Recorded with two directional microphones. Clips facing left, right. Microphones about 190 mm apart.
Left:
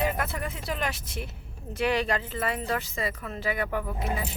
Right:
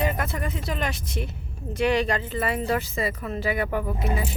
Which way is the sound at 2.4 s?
5° right (ahead or behind).